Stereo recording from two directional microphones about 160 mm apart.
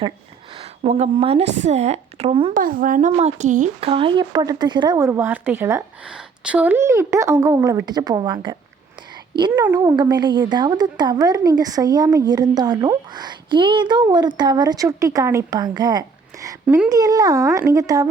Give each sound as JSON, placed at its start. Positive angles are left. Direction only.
{"t": 0.6, "sound": "a woman's voice", "side_deg": -40}
{"t": 2.5, "sound": "a woman's voice", "side_deg": -60}
{"t": 3.8, "sound": "a woman's voice", "side_deg": -35}
{"t": 6.1, "sound": "a woman's voice", "side_deg": -5}
{"t": 9.5, "sound": "a woman's voice", "side_deg": -15}
{"t": 16.6, "sound": "a woman's voice", "side_deg": -10}
{"t": 16.9, "sound": "a woman's voice", "side_deg": -20}